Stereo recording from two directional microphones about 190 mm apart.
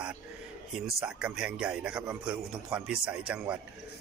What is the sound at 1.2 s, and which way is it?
A man's voice, 5° right (ahead or behind).